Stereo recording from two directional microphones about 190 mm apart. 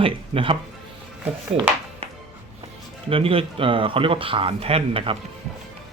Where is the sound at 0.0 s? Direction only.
30° right (ahead or behind).